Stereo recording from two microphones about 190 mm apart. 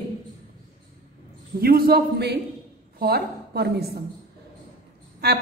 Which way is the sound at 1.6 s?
50° right (ahead or behind).